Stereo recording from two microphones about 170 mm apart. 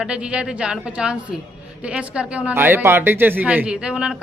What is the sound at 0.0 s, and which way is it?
A woman's voice, 5° right (ahead or behind).